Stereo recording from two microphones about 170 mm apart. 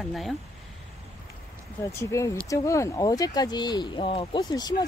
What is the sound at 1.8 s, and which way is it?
Speech, 15° left (ahead or behind).